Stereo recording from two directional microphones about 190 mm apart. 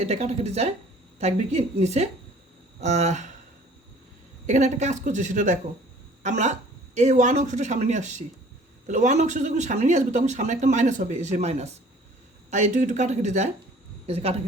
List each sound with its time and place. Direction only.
0.1 s speech: 35° right (ahead or behind)
4.4 s speech: 40° right (ahead or behind)